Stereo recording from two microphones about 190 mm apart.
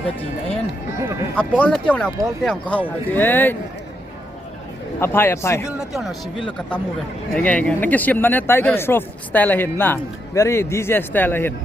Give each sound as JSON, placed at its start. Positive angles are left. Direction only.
{"t": 0.2, "sound": "speech", "side_deg": 30}
{"t": 1.4, "sound": "speech", "side_deg": 5}
{"t": 4.9, "sound": "speech", "side_deg": 10}
{"t": 5.6, "sound": "speech", "side_deg": 0}
{"t": 7.3, "sound": "speech", "side_deg": 10}